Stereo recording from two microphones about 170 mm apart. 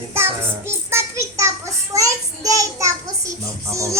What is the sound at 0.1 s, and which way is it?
Child singing, 15° right (ahead or behind).